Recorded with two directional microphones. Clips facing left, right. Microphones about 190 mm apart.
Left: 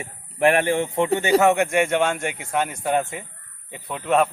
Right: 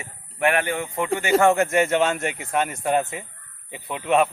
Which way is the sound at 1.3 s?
Centre (ahead or behind).